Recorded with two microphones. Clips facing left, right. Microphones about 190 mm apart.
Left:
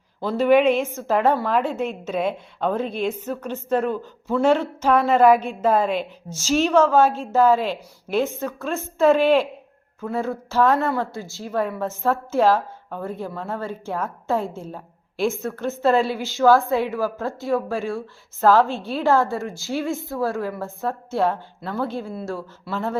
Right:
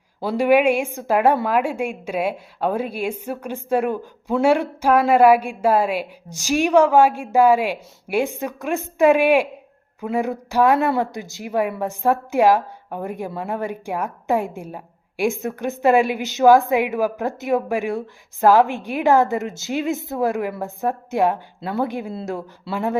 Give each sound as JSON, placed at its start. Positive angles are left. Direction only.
{"t": 0.2, "sound": "speech", "side_deg": -10}